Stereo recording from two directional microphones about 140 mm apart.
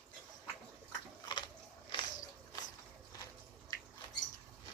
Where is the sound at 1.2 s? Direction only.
35° left (ahead or behind).